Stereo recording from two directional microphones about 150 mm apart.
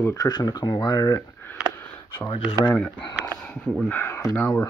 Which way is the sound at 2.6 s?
5° left (ahead or behind).